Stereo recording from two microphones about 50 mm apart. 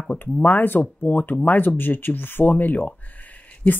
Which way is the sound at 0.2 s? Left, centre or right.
Left.